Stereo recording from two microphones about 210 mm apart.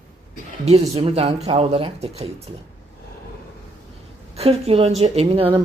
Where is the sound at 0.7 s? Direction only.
30° right (ahead or behind).